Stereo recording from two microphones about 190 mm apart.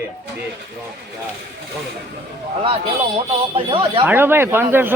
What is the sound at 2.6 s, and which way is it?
Speech, 30° right (ahead or behind).